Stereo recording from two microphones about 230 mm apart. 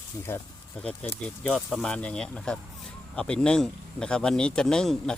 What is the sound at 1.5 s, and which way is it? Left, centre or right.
Speech, centre.